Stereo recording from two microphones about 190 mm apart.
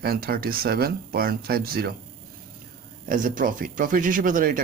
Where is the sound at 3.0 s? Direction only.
45° right (ahead or behind).